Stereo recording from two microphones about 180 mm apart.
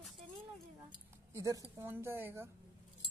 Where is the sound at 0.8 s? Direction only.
20° right (ahead or behind).